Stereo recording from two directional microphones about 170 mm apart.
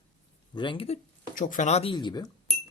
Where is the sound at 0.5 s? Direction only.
30° left (ahead or behind).